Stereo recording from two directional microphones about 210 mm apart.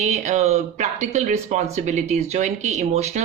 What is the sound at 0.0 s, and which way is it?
A man's voice, 35° right (ahead or behind).